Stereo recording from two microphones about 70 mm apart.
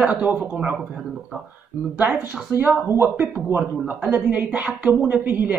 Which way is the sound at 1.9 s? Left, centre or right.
Right.